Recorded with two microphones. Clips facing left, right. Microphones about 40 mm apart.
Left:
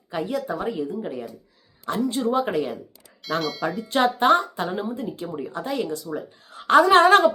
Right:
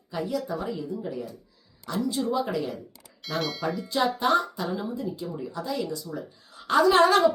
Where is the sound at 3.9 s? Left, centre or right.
Left.